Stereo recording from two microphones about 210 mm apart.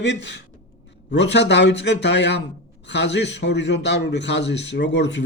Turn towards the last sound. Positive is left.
turn(degrees=60)  # may be behind; listen again after turning